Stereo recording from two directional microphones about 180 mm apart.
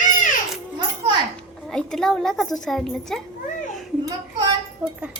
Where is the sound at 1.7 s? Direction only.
5° left (ahead or behind).